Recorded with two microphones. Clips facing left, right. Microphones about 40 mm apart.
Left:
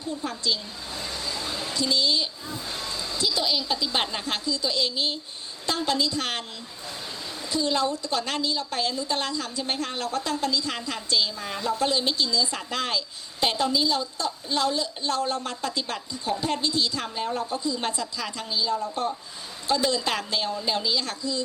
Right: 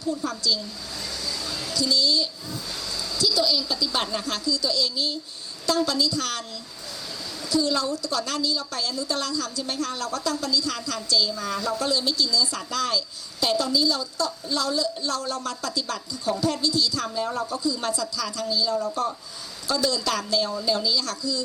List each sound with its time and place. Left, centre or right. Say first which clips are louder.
0.3 s a sound: right 2 dB; left
5.6 s a woman's voice: right 2 dB; left
7.4 s a woman's voice: right 1 dB; left